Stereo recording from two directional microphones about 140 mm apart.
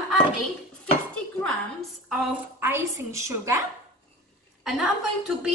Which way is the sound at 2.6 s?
20° right (ahead or behind).